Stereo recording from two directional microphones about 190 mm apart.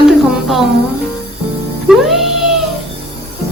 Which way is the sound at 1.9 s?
Centre (ahead or behind).